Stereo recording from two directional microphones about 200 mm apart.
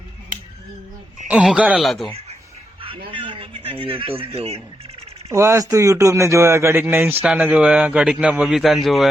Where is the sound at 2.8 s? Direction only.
25° right (ahead or behind).